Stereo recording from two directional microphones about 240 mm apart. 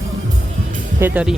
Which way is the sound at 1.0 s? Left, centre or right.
Centre.